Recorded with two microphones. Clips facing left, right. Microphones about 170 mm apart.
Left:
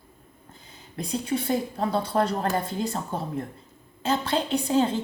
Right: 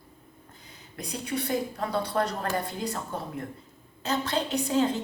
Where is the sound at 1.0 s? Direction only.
25° left (ahead or behind).